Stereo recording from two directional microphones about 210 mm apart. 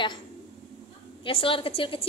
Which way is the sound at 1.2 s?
25° left (ahead or behind).